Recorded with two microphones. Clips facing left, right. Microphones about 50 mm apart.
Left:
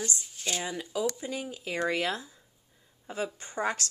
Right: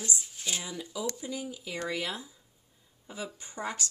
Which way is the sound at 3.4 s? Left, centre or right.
Left.